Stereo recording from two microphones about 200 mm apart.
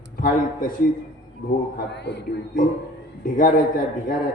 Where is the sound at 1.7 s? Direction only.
60° left (ahead or behind).